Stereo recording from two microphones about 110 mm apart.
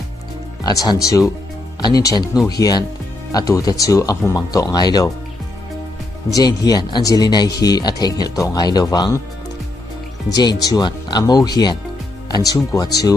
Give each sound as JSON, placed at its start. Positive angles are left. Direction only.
{"t": 0.7, "sound": "speech", "side_deg": 35}
{"t": 6.3, "sound": "speech", "side_deg": 35}
{"t": 10.3, "sound": "speech", "side_deg": 40}